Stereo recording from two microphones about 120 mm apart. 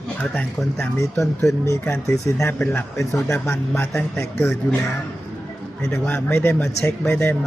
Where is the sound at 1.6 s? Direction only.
20° left (ahead or behind).